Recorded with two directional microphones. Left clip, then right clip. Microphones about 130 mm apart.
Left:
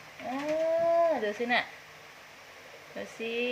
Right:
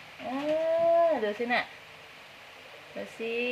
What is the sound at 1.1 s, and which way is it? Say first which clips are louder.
Speech: right 1 dB; centre (ahead or behind).